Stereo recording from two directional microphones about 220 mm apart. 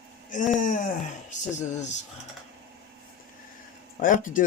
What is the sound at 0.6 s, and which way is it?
Speech, 35° left (ahead or behind).